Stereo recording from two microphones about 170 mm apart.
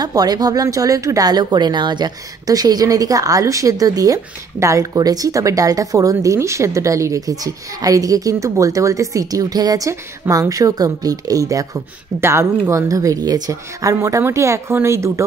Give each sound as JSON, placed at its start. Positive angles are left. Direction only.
{"t": 0.0, "sound": "speech", "side_deg": -25}